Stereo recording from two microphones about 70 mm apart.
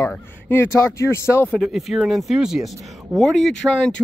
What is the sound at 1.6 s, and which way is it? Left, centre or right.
Speech, centre.